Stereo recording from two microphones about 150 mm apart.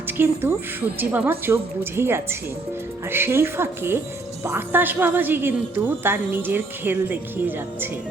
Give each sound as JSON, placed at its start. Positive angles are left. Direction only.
{"t": 0.2, "sound": "a woman's voice", "side_deg": -15}